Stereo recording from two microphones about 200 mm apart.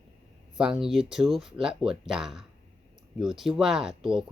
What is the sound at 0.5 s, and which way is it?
Speech, 5° right (ahead or behind).